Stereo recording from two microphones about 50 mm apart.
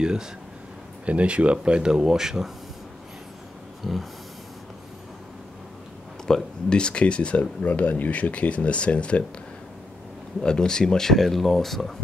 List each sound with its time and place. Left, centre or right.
0.0 s speech: centre
3.8 s speech: centre
6.2 s speech: centre
10.4 s speech: centre